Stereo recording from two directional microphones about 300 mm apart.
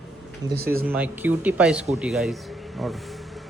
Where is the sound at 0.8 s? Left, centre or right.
Centre.